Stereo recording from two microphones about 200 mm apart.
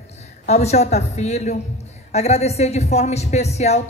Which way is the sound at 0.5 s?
35° left (ahead or behind).